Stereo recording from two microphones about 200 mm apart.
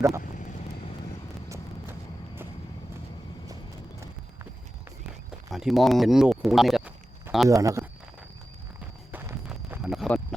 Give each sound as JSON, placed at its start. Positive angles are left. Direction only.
{"t": 1.5, "sound": "vehicle", "side_deg": -10}
{"t": 5.5, "sound": "speech", "side_deg": 0}
{"t": 7.5, "sound": "speech", "side_deg": -15}
{"t": 9.1, "sound": "a sound", "side_deg": -10}